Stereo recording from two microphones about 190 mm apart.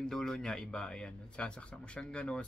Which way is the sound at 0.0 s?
Centre (ahead or behind).